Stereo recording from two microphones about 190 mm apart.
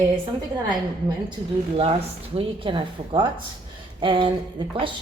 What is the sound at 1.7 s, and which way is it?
Speech, 30° right (ahead or behind).